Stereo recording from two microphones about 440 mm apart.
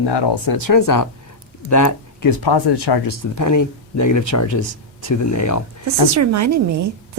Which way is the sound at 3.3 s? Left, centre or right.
Left.